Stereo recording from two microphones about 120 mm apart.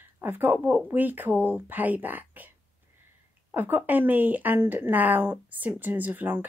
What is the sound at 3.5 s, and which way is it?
A woman's voice, 15° right (ahead or behind).